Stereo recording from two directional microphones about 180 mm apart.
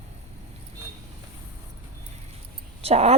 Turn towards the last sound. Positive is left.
turn(degrees=-35)  # may be behind; listen again after turning